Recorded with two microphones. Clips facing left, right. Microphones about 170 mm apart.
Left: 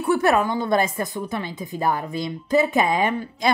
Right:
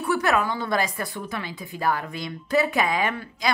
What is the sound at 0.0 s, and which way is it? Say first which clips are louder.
A woman's voice: left 4 dB; 20° left (ahead or behind).